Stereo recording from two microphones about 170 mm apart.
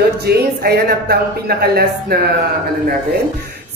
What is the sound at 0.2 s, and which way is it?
Speech, 70° right (ahead or behind).